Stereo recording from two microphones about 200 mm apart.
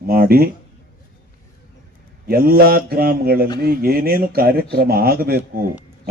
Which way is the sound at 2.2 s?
50° right (ahead or behind).